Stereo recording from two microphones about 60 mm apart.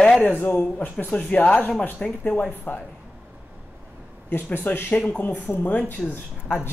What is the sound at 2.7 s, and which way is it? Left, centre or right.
Speech, left.